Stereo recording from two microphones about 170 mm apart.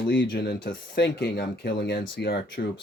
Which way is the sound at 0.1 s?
75° left (ahead or behind).